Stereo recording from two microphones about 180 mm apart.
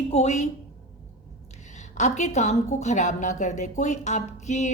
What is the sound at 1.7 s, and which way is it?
A woman's voice, 40° left (ahead or behind).